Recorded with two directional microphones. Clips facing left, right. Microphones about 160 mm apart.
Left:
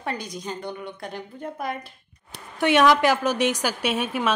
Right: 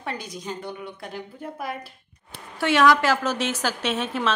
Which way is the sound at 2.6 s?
20° left (ahead or behind).